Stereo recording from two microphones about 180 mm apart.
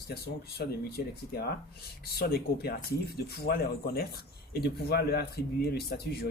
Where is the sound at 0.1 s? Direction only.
60° left (ahead or behind).